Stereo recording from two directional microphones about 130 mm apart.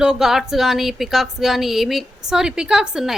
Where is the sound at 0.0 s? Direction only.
5° right (ahead or behind).